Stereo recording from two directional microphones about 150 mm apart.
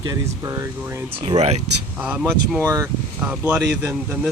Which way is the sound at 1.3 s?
45° right (ahead or behind).